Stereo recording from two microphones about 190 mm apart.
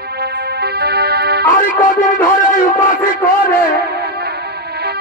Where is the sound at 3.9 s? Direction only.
60° right (ahead or behind).